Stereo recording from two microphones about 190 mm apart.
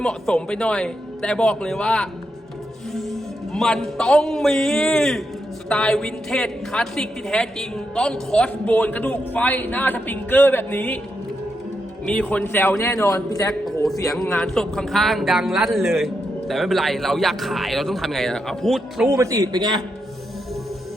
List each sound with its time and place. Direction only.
0.0 s a man's voice: 5° left (ahead or behind)
12.0 s a woman's voice: 5° left (ahead or behind)
13.8 s a man's voice: centre (ahead or behind)
19.0 s a man's voice: 15° right (ahead or behind)